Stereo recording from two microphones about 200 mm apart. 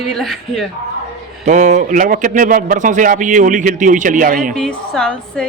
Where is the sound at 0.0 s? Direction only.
Centre (ahead or behind).